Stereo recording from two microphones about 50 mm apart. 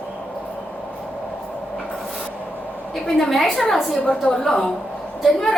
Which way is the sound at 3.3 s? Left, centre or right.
Centre.